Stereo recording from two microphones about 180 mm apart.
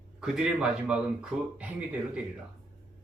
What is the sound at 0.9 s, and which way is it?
Speech, 5° right (ahead or behind).